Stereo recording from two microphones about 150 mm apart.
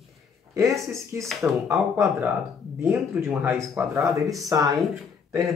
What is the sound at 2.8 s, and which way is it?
Speech, 20° right (ahead or behind).